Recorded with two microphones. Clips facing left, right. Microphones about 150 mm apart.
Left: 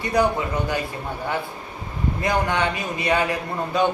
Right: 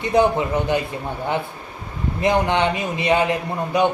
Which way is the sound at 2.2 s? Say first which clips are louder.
Right 5 dB; 20° right (ahead or behind).